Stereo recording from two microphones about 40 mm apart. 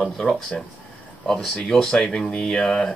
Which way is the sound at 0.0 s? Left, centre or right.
Centre.